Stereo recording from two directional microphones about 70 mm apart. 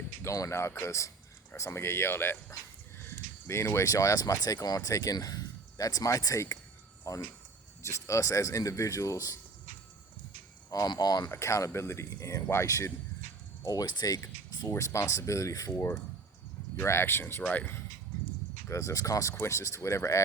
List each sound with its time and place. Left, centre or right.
0.2 s speech: left
3.1 s a sound: left
3.9 s speech: left
10.7 s speech: left
11.3 s speech: left
13.7 s speech: left
14.7 s speech: left
16.7 s speech: left
17.4 s speech: left
18.7 s speech: left
19.3 s speech: left